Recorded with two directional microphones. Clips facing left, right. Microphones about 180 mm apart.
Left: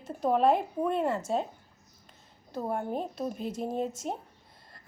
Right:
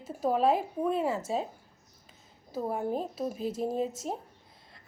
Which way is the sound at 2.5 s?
5° right (ahead or behind).